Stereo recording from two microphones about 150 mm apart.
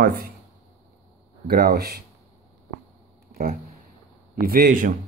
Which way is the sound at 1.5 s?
90° right.